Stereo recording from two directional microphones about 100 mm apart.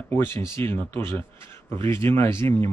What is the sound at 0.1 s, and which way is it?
Speech, 25° left (ahead or behind).